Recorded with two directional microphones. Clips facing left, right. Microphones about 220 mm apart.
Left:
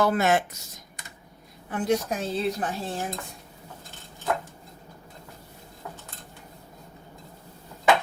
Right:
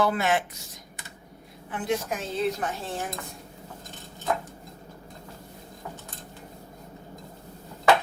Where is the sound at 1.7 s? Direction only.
40° left (ahead or behind).